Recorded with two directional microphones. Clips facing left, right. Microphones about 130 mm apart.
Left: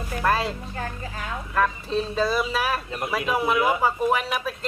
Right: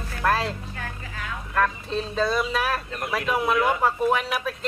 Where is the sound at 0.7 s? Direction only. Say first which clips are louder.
Left 4 dB; 35° left (ahead or behind).